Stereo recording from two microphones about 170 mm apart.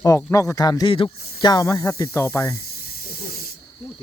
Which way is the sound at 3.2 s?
60° left (ahead or behind).